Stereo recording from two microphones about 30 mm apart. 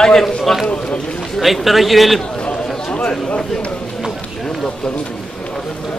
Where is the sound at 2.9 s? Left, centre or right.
Left.